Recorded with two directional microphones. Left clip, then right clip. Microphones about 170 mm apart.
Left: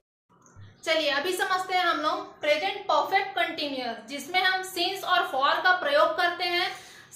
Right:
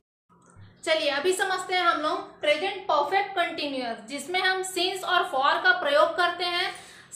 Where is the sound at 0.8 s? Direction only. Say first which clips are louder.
Right 1 dB; 20° right (ahead or behind).